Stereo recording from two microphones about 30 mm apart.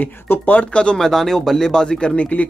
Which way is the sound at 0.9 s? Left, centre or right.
Centre.